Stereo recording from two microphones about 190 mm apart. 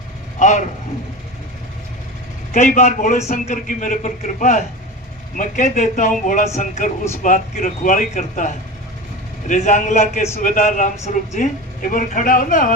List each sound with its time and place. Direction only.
0.3 s vehicle: 40° left (ahead or behind)
2.5 s a man's voice: 40° left (ahead or behind)